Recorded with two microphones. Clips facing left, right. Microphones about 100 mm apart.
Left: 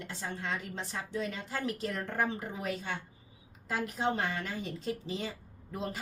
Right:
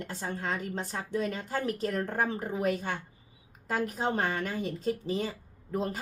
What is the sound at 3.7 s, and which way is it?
A woman's voice, 40° right (ahead or behind).